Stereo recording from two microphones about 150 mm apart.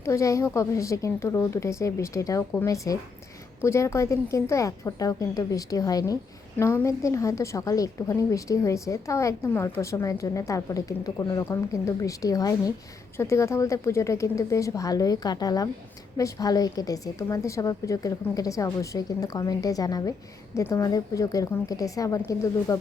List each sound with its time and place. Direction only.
0.0 s a woman's voice: 20° left (ahead or behind)